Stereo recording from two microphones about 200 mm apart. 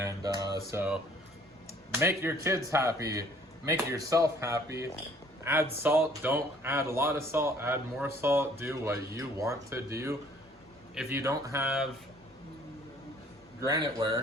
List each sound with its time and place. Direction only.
0.0 s a sound: 20° right (ahead or behind)
1.9 s speech: 10° right (ahead or behind)
13.6 s speech: 20° right (ahead or behind)